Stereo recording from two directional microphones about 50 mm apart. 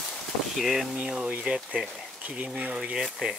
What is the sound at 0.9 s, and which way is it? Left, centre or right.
Speech, right.